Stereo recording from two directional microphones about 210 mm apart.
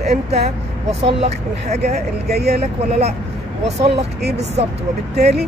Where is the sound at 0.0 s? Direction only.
30° right (ahead or behind).